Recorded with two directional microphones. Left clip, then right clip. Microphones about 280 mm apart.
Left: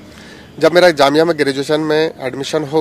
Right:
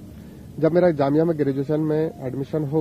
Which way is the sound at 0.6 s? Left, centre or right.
Centre.